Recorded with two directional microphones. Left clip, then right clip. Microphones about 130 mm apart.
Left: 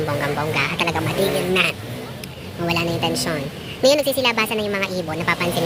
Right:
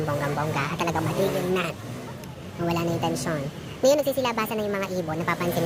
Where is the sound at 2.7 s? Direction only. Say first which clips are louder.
Left 5 dB; 10° right (ahead or behind).